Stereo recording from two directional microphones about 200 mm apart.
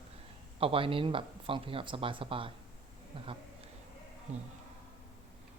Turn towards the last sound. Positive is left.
turn(degrees=-35)  # may be behind; listen again after turning